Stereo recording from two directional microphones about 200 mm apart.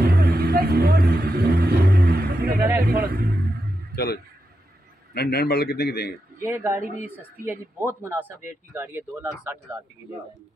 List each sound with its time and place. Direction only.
0.0 s vehicle: 55° right (ahead or behind)
2.8 s a man's voice: 50° right (ahead or behind)
3.9 s a man's voice: 55° left (ahead or behind)
6.4 s speech: 10° right (ahead or behind)